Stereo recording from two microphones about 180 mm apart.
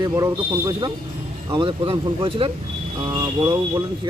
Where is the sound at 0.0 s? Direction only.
20° right (ahead or behind).